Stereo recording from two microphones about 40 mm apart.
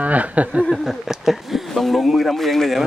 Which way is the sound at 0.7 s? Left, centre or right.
Centre.